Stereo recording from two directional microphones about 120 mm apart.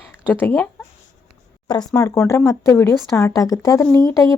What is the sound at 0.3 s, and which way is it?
Speech, 15° left (ahead or behind).